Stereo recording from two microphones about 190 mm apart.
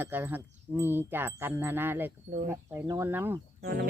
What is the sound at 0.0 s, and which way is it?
Speech, 10° right (ahead or behind).